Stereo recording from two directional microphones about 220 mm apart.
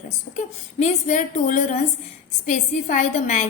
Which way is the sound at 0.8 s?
30° left (ahead or behind).